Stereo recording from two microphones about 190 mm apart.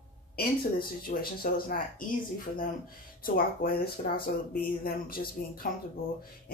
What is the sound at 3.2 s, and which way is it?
Speech, 50° left (ahead or behind).